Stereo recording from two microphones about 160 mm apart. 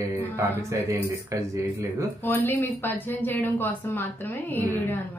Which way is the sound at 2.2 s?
10° left (ahead or behind).